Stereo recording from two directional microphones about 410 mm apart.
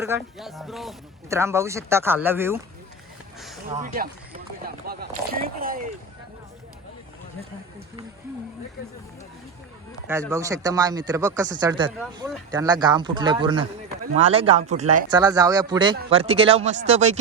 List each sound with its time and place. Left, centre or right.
0.0 s speech: centre
3.4 s a sound: centre
3.8 s speech: centre
10.1 s speech: centre